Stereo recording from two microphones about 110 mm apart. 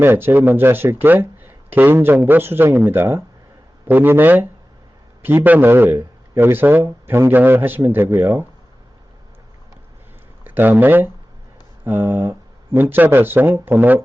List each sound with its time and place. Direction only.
0.0 s speech: 20° right (ahead or behind)
10.4 s speech: 15° right (ahead or behind)